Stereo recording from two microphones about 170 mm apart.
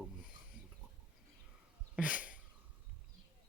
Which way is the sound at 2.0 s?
10° right (ahead or behind).